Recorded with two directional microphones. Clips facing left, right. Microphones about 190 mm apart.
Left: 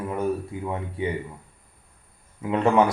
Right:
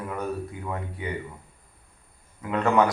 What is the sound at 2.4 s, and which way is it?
Speech, 25° left (ahead or behind).